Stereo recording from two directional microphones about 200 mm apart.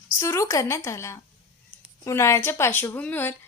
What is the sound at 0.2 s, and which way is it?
A woman's voice, 15° left (ahead or behind).